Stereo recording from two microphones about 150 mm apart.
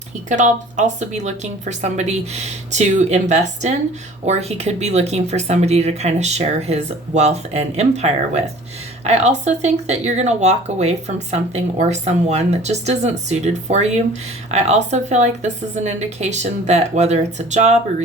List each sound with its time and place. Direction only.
0.3 s speech: 55° right (ahead or behind)